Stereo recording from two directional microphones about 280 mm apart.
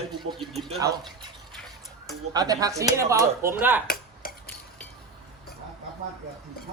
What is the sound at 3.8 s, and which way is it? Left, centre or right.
Dishes, left.